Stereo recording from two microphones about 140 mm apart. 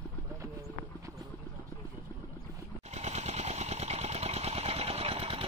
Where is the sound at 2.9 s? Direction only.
50° right (ahead or behind).